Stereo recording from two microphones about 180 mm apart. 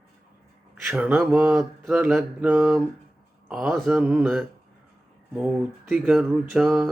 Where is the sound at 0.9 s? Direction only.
10° right (ahead or behind).